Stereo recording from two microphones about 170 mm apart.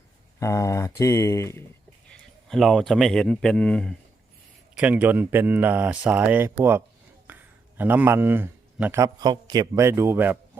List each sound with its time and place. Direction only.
0.3 s speech: 20° left (ahead or behind)
2.0 s speech: centre (ahead or behind)
4.8 s speech: 10° right (ahead or behind)